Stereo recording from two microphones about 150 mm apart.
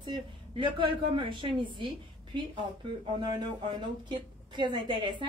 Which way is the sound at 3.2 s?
30° right (ahead or behind).